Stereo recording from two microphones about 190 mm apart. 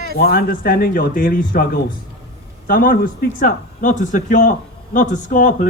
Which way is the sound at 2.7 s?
50° left (ahead or behind).